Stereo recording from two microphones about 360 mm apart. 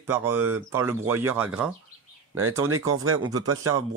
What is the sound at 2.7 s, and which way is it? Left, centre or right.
Speech, right.